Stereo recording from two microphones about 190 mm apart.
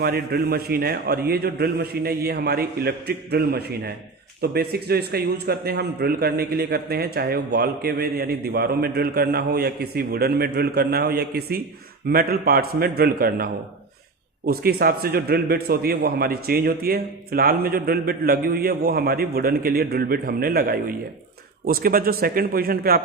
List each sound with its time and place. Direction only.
0.0 s a man's voice: 55° right (ahead or behind)